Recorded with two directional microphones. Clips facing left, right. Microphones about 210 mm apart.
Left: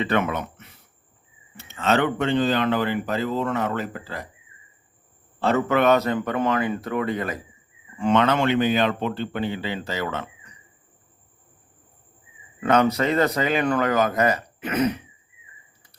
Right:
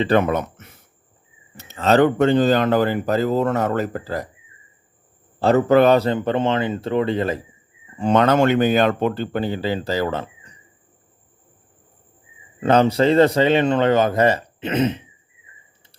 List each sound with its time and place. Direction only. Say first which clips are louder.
0.0 s speech: right 6 dB; 35° right (ahead or behind)
5.4 s speech: right 6 dB; 35° right (ahead or behind)
12.5 s speech: right 4 dB; 30° right (ahead or behind)